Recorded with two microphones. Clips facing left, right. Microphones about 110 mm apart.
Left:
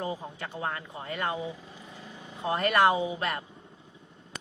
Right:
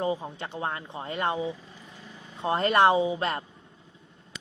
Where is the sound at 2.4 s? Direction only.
30° right (ahead or behind).